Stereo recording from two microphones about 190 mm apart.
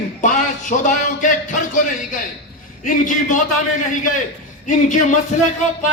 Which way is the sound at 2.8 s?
45° left (ahead or behind).